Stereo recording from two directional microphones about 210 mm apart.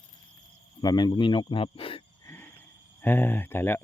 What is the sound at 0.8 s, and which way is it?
Speech, 20° left (ahead or behind).